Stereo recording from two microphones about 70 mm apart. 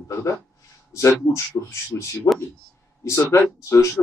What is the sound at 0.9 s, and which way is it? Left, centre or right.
Speech, left.